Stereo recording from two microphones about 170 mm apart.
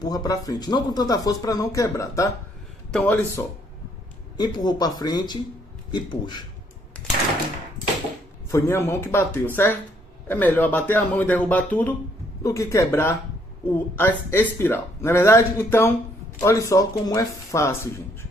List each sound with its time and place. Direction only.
0.0 s speech: 20° left (ahead or behind)
2.9 s speech: 10° left (ahead or behind)
4.4 s speech: 25° left (ahead or behind)
8.5 s speech: 15° left (ahead or behind)